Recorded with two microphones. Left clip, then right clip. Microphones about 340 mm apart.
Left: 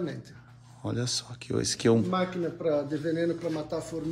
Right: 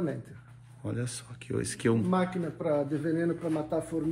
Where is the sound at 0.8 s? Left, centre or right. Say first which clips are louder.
Left 6 dB; centre.